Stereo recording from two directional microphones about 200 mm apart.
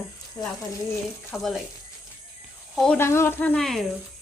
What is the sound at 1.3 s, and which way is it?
Speech, centre (ahead or behind).